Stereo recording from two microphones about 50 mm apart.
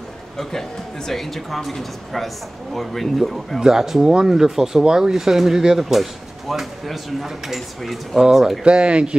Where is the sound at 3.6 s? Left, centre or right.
Centre.